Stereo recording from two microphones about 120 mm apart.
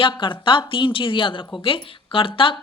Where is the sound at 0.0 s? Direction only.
40° left (ahead or behind).